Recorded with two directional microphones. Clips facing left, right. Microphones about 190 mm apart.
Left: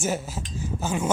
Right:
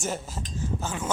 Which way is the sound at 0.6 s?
10° left (ahead or behind).